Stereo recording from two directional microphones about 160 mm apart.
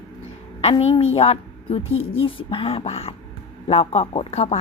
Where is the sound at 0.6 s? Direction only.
40° left (ahead or behind).